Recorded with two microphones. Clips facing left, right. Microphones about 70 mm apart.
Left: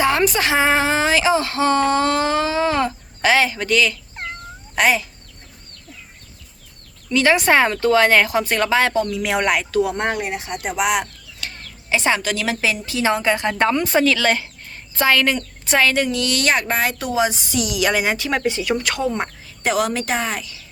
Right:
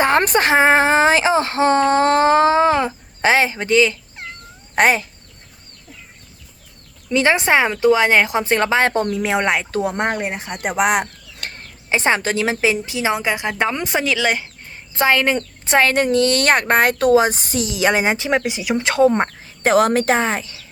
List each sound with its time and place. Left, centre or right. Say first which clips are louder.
0.0 s speech: right 2 dB; right
4.7 s speech: right 2 dB; right
7.1 s a woman's voice: even; right
7.5 s a woman's voice: right 1 dB; centre; by 9.2 s right
9.2 s speech: right 1 dB; right
11.9 s a woman's voice: right 2 dB; right
17.6 s a woman's voice: right 2 dB; right
18.8 s a woman's voice: right 7 dB; right
19.0 s speech: right 7 dB; right